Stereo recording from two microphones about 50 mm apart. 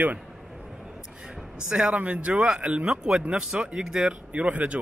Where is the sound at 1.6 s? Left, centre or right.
Right.